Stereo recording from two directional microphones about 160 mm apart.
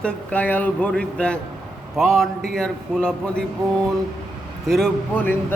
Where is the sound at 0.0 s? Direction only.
10° left (ahead or behind).